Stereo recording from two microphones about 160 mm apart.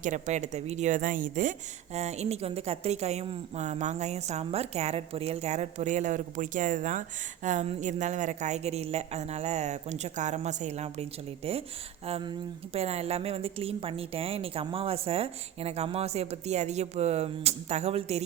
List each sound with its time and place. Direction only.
0.0 s a woman's voice: 50° right (ahead or behind)
12.0 s speech: 40° right (ahead or behind)